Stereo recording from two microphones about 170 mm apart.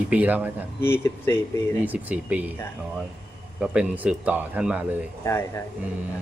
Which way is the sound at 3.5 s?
5° right (ahead or behind).